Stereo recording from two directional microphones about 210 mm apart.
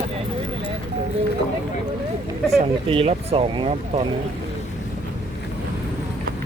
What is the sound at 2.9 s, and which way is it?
Speech, 30° right (ahead or behind).